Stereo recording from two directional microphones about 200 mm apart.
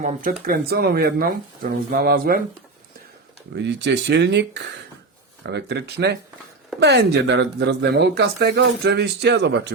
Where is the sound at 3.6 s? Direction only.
60° right (ahead or behind).